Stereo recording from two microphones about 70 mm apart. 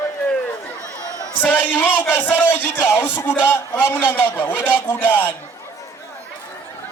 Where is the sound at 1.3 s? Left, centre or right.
Left.